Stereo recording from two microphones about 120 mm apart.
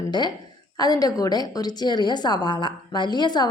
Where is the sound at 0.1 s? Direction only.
35° left (ahead or behind).